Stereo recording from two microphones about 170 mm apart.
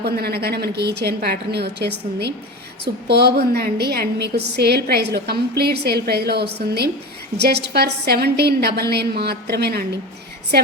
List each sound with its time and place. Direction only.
0.0 s a woman's voice: 70° right (ahead or behind)